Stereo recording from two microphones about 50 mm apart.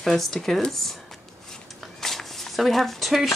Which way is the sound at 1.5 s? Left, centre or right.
Centre.